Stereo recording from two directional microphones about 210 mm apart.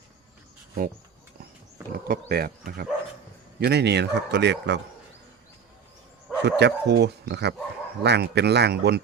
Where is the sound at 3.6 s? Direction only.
50° right (ahead or behind).